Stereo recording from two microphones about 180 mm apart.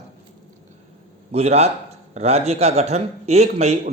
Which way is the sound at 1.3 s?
35° right (ahead or behind).